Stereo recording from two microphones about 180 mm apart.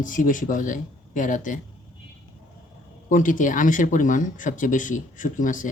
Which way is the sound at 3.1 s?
45° left (ahead or behind).